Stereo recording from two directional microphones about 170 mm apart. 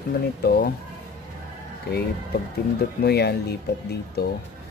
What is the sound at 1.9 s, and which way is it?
A man's voice, 75° left (ahead or behind).